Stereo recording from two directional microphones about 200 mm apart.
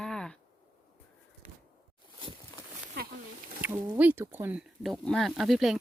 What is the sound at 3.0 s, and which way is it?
Speech, 50° right (ahead or behind).